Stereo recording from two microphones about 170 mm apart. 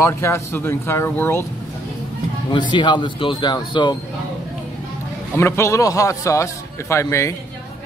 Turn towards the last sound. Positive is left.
turn(degrees=15)  # may be behind; listen again after turning